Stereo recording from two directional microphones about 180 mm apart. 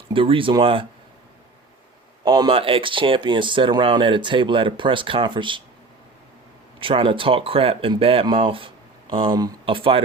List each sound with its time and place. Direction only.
0.1 s speech: 30° right (ahead or behind)
2.2 s speech: 25° right (ahead or behind)
6.7 s speech: 30° right (ahead or behind)